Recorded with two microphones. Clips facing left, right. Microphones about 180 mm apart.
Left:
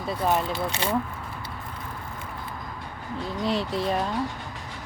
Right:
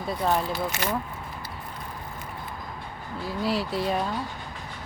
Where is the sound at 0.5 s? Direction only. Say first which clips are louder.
Left 1 dB; 25° left (ahead or behind).